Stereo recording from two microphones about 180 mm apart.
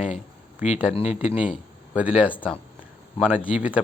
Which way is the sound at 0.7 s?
5° right (ahead or behind).